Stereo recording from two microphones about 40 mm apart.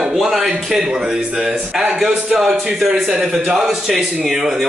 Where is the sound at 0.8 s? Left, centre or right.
Centre.